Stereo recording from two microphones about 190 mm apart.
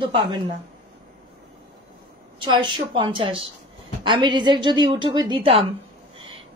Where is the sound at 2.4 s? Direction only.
25° right (ahead or behind).